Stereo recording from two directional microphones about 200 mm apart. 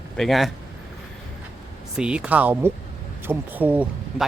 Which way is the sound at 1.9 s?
5° right (ahead or behind).